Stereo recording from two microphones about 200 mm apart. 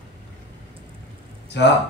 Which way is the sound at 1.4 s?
60° left (ahead or behind).